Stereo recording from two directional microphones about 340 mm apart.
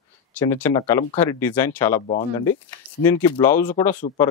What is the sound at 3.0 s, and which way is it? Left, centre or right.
Speech, centre.